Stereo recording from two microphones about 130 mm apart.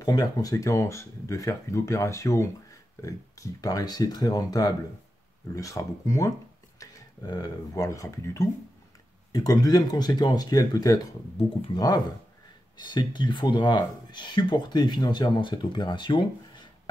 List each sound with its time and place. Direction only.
0.0 s speech: 30° left (ahead or behind)